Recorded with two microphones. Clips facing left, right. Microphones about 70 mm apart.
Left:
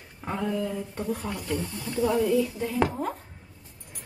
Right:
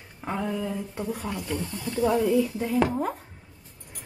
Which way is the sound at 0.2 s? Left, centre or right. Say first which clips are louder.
Even; centre.